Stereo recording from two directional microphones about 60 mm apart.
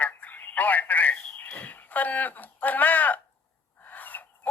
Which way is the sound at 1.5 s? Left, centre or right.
Left.